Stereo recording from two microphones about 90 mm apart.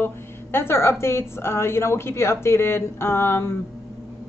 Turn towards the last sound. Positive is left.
turn(degrees=30)  # may be behind; listen again after turning